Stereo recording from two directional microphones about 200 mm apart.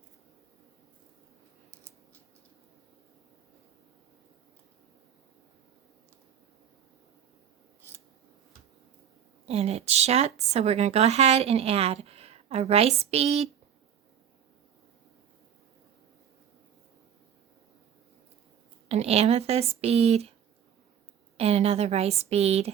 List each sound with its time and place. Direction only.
9.5 s a woman's voice: 30° right (ahead or behind)
18.9 s a woman's voice: 30° right (ahead or behind)
21.3 s a woman's voice: 30° right (ahead or behind)